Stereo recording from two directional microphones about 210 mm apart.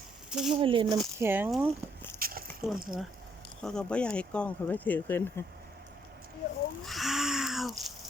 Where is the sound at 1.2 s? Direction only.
10° right (ahead or behind).